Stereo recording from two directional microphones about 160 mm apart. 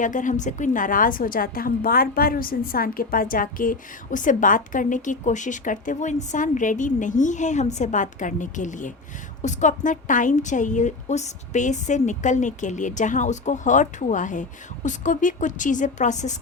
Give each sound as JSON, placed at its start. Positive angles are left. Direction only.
{"t": 0.0, "sound": "a woman's voice", "side_deg": 55}